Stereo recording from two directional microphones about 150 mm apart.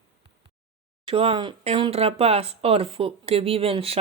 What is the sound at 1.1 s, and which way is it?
Speech, 35° right (ahead or behind).